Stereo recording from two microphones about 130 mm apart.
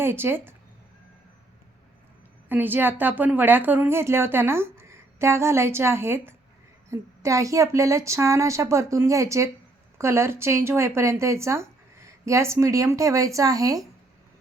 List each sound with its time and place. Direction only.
0.0 s a woman's voice: 15° right (ahead or behind)
2.5 s a woman's voice: 15° right (ahead or behind)